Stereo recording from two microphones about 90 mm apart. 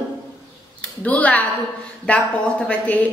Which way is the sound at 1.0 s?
15° left (ahead or behind).